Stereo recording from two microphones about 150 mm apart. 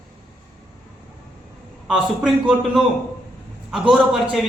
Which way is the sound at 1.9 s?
5° right (ahead or behind).